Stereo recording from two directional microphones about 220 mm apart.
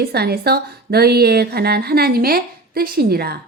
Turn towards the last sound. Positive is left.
turn(degrees=-45)  # may be behind; listen again after turning